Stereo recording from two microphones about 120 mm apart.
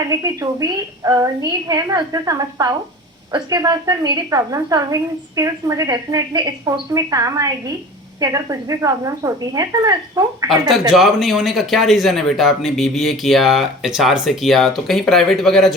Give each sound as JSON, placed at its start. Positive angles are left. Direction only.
{"t": 0.0, "sound": "a woman's voice", "side_deg": -30}
{"t": 10.5, "sound": "a man's voice", "side_deg": 0}